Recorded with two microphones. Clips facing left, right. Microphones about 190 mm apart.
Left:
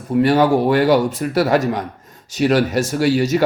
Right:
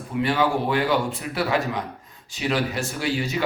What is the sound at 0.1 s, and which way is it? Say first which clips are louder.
Speech: left 8 dB; 40° left (ahead or behind).